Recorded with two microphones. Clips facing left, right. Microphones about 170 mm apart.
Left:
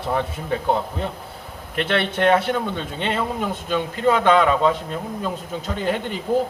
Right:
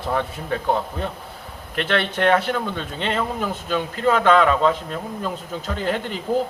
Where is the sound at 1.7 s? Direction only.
20° left (ahead or behind).